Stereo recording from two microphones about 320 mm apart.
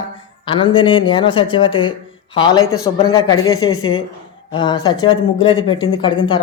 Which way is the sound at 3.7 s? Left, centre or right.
Left.